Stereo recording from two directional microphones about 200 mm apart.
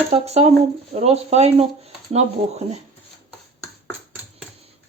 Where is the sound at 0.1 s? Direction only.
30° right (ahead or behind).